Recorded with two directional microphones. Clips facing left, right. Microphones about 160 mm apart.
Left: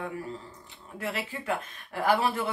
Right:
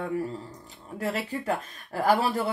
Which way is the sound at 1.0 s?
40° right (ahead or behind).